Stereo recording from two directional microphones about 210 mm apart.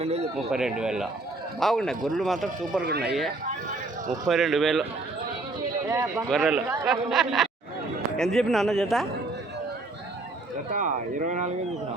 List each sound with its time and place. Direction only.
0.0 s speech: 30° right (ahead or behind)
0.5 s speech: 5° right (ahead or behind)
2.8 s speech: 50° right (ahead or behind)
4.3 s speech: centre (ahead or behind)
5.9 s speech: 15° right (ahead or behind)
6.3 s speech: 5° right (ahead or behind)
10.7 s speech: 40° right (ahead or behind)